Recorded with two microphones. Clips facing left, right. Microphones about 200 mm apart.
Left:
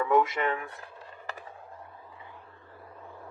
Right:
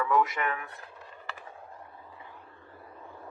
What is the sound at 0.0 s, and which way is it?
Speech, 25° left (ahead or behind).